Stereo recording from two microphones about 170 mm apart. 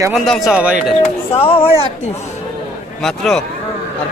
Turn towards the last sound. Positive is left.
turn(degrees=0)  # may be behind; listen again after turning